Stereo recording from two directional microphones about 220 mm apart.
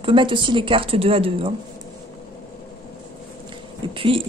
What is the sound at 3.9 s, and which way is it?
Speech, 25° right (ahead or behind).